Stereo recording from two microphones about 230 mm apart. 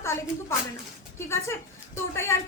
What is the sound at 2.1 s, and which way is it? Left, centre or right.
Speech, centre.